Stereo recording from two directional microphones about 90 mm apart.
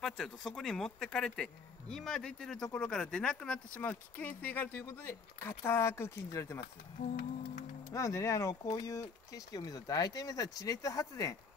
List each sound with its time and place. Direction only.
0.0 s a man's voice: 5° left (ahead or behind); by 6.6 s 30° left (ahead or behind)
7.9 s speech: 35° left (ahead or behind)